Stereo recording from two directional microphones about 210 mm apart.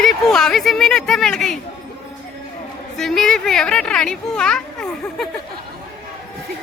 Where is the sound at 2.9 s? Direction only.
Centre (ahead or behind).